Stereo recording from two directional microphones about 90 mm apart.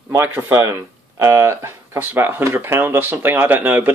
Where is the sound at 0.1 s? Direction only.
25° right (ahead or behind).